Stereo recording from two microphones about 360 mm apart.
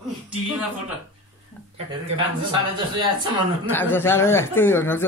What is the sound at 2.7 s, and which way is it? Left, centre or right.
Speech, centre.